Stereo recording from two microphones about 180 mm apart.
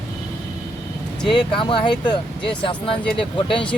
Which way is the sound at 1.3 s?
25° left (ahead or behind).